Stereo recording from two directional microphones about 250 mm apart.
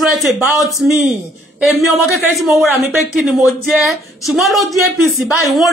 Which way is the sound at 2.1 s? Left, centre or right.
Centre.